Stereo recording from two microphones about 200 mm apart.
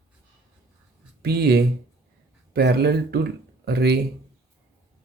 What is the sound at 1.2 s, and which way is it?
Speech, 55° right (ahead or behind).